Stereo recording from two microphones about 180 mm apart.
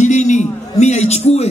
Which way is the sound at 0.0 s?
40° left (ahead or behind).